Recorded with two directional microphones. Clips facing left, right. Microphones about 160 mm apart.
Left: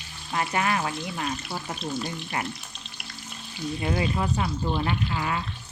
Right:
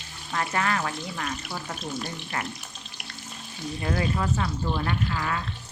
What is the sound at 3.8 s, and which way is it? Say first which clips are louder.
Speech: even; 15° left (ahead or behind).